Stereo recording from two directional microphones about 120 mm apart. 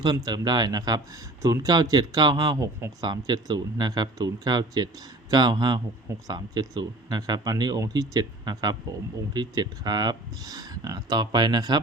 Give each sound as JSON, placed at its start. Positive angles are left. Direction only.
{"t": 0.0, "sound": "speech", "side_deg": -35}